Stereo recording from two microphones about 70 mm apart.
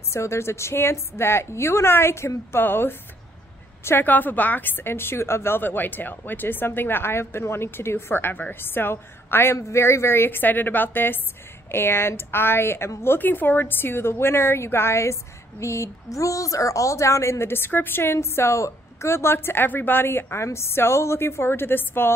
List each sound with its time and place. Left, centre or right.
0.1 s a woman's voice: left